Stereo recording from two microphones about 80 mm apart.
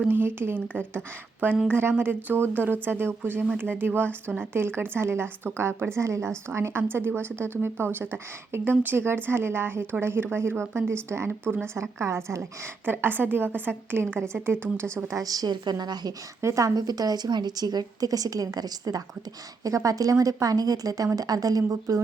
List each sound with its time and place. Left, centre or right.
0.1 s a woman's voice: right
16.4 s a woman's voice: right